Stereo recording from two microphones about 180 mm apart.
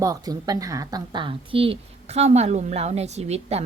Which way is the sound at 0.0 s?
20° right (ahead or behind).